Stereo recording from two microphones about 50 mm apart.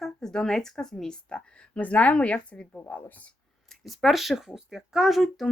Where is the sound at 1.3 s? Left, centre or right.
Left.